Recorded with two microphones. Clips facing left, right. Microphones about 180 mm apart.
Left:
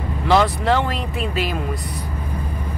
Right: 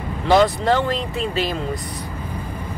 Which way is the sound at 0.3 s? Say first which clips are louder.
Right 1 dB; 35° right (ahead or behind).